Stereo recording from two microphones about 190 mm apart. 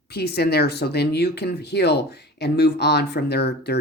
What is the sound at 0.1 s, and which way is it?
Speech, 60° left (ahead or behind).